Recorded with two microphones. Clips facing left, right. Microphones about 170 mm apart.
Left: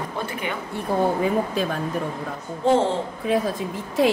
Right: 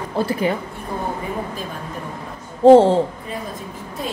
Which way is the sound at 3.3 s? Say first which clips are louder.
Left 8 dB; 90° left.